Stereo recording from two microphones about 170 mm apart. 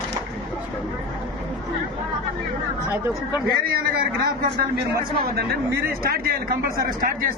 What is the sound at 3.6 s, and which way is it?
Speech, 60° right (ahead or behind).